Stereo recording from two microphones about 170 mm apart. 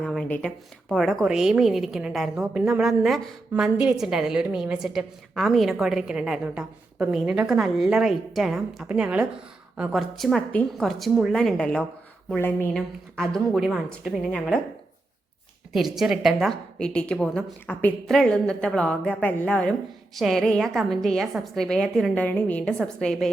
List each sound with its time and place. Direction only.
0.0 s a woman's voice: 5° left (ahead or behind)
12.7 s a woman's voice: 5° left (ahead or behind)
16.0 s a woman's voice: centre (ahead or behind)